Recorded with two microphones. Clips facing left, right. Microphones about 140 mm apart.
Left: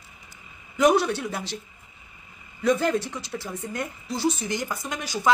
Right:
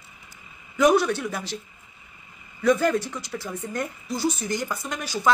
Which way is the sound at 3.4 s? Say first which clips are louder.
Right 1 dB; 20° right (ahead or behind).